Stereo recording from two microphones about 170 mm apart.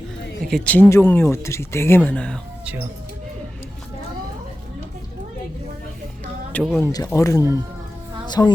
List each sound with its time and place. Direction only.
0.4 s speech: 5° left (ahead or behind)
6.5 s speech: centre (ahead or behind)
6.8 s speech: 20° left (ahead or behind)